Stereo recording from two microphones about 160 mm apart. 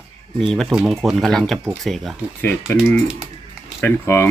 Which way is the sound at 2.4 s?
15° left (ahead or behind).